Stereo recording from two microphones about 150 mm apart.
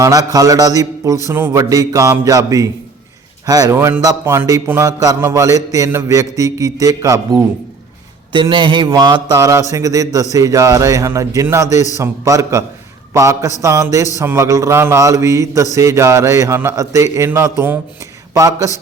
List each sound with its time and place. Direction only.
0.0 s a man's voice: 25° right (ahead or behind)
8.3 s a man's voice: 30° right (ahead or behind)